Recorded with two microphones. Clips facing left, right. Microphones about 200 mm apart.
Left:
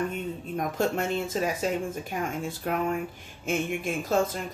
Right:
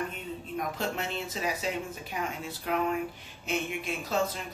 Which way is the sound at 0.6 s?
45° left (ahead or behind).